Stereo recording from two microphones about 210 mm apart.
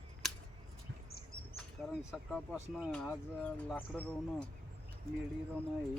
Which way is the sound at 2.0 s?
Centre (ahead or behind).